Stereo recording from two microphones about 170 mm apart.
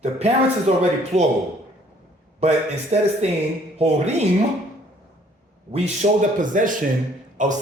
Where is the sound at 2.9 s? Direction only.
40° right (ahead or behind).